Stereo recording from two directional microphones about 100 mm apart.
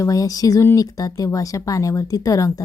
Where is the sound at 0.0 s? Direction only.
35° left (ahead or behind).